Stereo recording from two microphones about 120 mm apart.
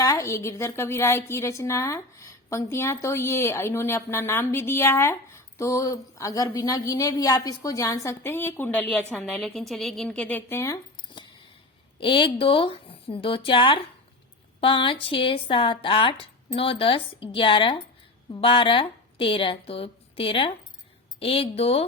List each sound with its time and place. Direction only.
0.0 s a woman's voice: 30° left (ahead or behind)
9.1 s a woman's voice: centre (ahead or behind)
11.9 s a woman's voice: 45° left (ahead or behind)